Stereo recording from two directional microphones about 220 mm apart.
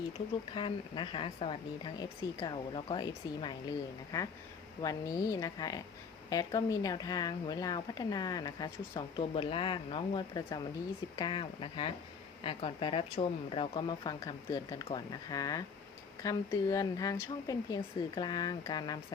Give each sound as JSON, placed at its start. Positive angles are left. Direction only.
{"t": 0.5, "sound": "a woman's voice", "side_deg": 20}